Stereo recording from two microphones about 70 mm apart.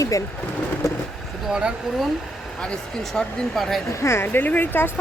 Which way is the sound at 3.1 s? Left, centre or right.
Centre.